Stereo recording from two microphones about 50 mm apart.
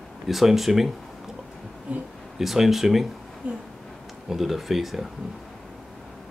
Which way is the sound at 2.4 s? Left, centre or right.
Centre.